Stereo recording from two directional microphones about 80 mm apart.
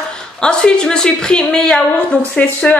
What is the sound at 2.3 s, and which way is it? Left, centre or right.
Speech, centre.